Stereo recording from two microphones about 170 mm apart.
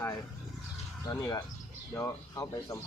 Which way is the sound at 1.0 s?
20° left (ahead or behind).